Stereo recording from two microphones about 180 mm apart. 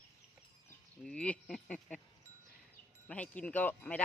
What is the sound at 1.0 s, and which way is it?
Speech, 5° left (ahead or behind).